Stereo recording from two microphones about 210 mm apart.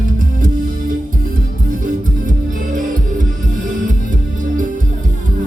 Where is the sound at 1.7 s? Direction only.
40° right (ahead or behind).